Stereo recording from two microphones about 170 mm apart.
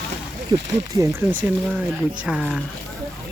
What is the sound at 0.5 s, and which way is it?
Speech, 25° right (ahead or behind).